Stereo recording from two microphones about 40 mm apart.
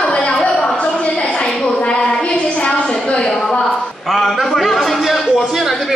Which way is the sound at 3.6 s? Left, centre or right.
Centre.